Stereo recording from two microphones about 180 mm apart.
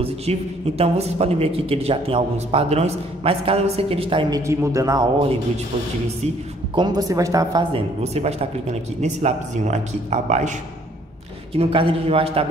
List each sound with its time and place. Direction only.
0.0 s speech: 35° right (ahead or behind)
4.5 s a man's voice: 15° right (ahead or behind)
6.2 s speech: 25° right (ahead or behind)
7.7 s speech: 35° right (ahead or behind)
11.5 s speech: 30° right (ahead or behind)